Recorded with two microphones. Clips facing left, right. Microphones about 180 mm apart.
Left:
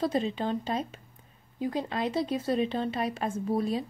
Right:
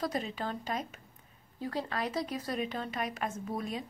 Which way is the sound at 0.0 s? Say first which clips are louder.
Left 6 dB; 25° left (ahead or behind).